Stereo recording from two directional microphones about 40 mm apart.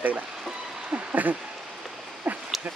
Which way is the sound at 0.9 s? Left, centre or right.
Right.